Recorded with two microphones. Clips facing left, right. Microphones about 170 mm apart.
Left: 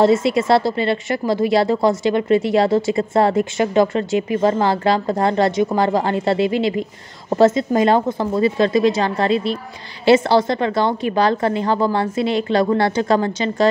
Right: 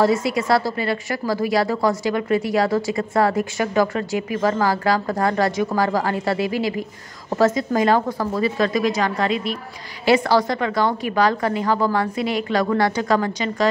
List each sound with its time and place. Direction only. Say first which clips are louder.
0.0 s a woman's voice: left 4 dB; 25° left (ahead or behind)